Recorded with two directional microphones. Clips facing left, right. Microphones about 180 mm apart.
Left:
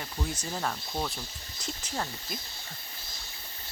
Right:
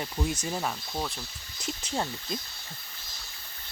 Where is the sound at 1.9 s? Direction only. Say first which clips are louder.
Right 4 dB; 20° right (ahead or behind).